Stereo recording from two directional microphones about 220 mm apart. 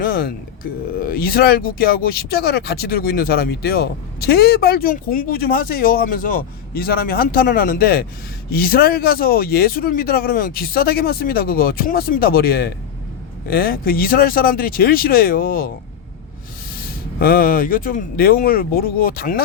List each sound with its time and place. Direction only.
0.0 s speech: 40° left (ahead or behind)
17.2 s speech: 40° left (ahead or behind)